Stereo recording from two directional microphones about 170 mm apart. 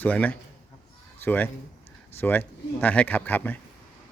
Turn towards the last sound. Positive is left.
turn(degrees=10)  # may be behind; listen again after turning